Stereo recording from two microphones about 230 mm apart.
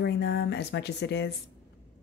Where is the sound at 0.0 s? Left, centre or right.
Left.